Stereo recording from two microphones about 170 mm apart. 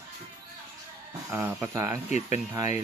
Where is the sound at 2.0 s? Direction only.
40° left (ahead or behind).